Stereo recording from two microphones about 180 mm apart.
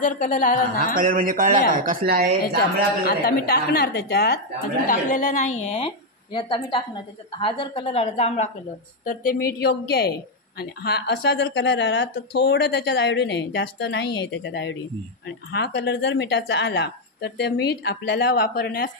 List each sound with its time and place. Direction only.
0.0 s a woman's voice: 45° left (ahead or behind)
0.9 s speech: 50° right (ahead or behind)
3.1 s a woman's voice: 60° left (ahead or behind)
4.8 s a woman's voice: 45° left (ahead or behind)
9.0 s a woman's voice: 50° left (ahead or behind); by 14.8 s 85° left
15.5 s speech: 70° left (ahead or behind)